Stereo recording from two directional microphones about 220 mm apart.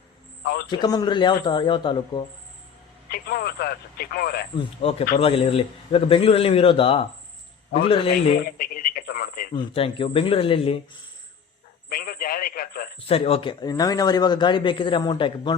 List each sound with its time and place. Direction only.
0.4 s a man's voice: 45° left (ahead or behind)
0.7 s speech: 20° left (ahead or behind)
3.1 s speech: 45° left (ahead or behind)
4.5 s speech: 25° left (ahead or behind)
8.1 s speech: 40° left (ahead or behind)
9.6 s speech: 25° left (ahead or behind)
11.9 s radio: 45° left (ahead or behind)
13.1 s speech: 25° left (ahead or behind)